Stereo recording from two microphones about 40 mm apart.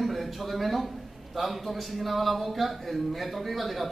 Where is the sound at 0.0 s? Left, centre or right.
Centre.